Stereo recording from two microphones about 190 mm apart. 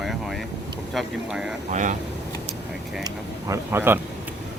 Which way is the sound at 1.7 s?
40° right (ahead or behind).